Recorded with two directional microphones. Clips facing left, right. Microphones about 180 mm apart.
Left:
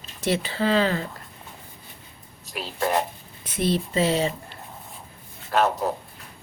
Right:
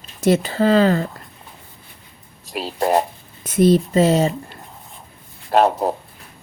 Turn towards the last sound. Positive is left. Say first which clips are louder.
# right 6 dB
turn(degrees=-35)  # may be behind; listen again after turning